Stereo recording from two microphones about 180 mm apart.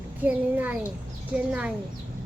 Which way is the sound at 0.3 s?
10° right (ahead or behind).